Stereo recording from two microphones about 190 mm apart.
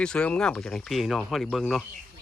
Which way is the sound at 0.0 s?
5° left (ahead or behind).